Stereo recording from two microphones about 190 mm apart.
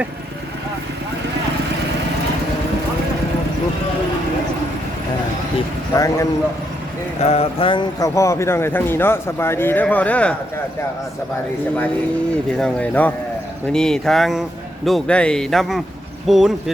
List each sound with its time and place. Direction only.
5.9 s speech: 15° left (ahead or behind)
7.2 s speech: 35° left (ahead or behind); by 10.3 s 5° left (ahead or behind)
12.5 s speech: 5° left (ahead or behind)